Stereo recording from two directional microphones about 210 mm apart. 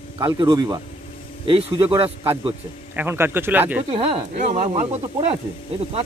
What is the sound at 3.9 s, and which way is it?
Speech, 25° right (ahead or behind).